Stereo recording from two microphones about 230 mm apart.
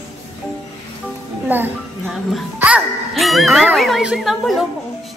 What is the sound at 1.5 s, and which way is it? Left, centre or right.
A child's voice, centre.